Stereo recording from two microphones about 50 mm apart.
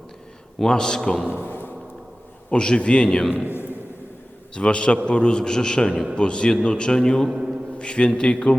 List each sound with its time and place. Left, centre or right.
0.6 s a man's voice: centre
1.4 s a sound: left
2.5 s a man's voice: centre
4.5 s a man's voice: centre
7.3 s a sound: centre
7.8 s a man's voice: left